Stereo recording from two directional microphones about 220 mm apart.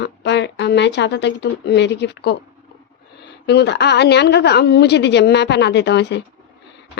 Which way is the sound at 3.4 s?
50° left (ahead or behind).